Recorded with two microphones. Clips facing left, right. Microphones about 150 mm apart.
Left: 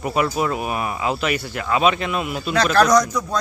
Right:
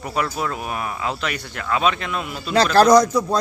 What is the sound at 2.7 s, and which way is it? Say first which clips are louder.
Speech: right 4 dB; 30° right (ahead or behind).